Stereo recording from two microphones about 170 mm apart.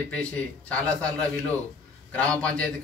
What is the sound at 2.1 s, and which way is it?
Speech, 5° left (ahead or behind).